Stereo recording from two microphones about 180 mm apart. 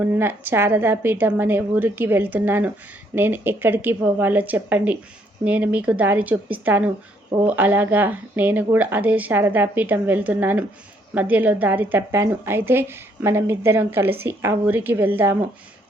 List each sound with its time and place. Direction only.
0.0 s a woman's voice: 10° right (ahead or behind)